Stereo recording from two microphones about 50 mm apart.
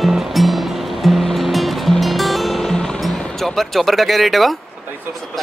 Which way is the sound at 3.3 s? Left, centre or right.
Centre.